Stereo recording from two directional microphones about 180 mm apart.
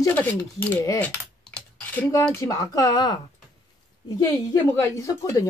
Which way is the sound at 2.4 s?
20° left (ahead or behind).